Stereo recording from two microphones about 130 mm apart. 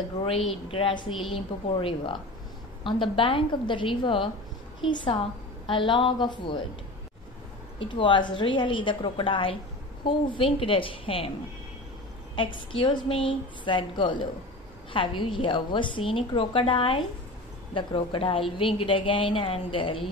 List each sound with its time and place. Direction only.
0.2 s a woman's voice: 50° left (ahead or behind)
7.8 s a woman's voice: 40° left (ahead or behind)
12.5 s a woman's voice: 40° left (ahead or behind)